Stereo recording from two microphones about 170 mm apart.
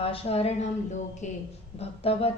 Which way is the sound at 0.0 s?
35° left (ahead or behind).